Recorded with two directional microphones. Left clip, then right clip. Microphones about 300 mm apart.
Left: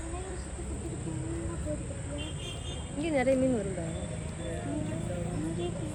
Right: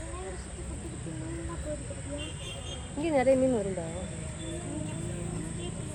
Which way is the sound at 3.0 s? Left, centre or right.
Centre.